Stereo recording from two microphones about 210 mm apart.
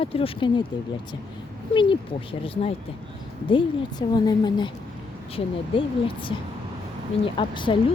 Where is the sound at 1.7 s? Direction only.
25° left (ahead or behind).